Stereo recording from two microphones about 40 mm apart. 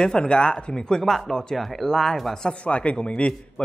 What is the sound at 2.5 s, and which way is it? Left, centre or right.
Speech, left.